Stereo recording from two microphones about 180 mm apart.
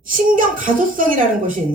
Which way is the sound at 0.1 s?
50° right (ahead or behind).